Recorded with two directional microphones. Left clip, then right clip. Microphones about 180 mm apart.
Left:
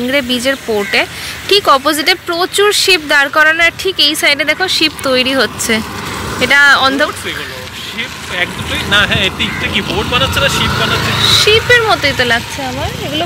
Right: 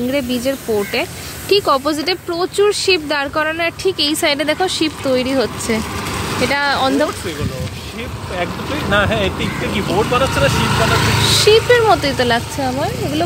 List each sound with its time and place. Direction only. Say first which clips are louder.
0.1 s speech: left 9 dB; centre (ahead or behind)
4.0 s speech: left 7 dB; 20° right (ahead or behind)
5.1 s speech: left 5 dB; 10° right (ahead or behind)
8.4 s speech: left 4 dB; 55° right (ahead or behind)
10.5 s speech: left 3 dB; 15° right (ahead or behind)
10.9 s speech: left 3 dB; 35° right (ahead or behind)